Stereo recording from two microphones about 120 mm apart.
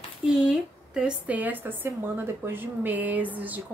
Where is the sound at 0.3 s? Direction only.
5° right (ahead or behind).